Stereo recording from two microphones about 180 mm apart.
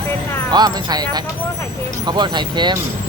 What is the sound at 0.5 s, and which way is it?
Speech, 20° right (ahead or behind).